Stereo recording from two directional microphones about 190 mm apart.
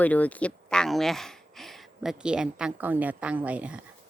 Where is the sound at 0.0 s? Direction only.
10° left (ahead or behind); by 3.8 s 5° right (ahead or behind).